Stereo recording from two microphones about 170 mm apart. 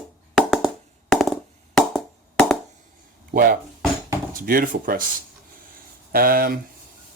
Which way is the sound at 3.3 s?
55° right (ahead or behind).